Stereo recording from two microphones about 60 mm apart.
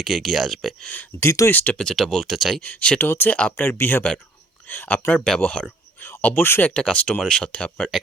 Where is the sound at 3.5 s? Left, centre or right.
Left.